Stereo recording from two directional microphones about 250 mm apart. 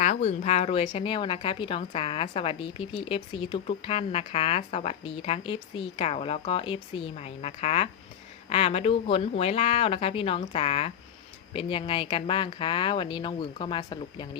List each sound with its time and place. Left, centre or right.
0.0 s speech: left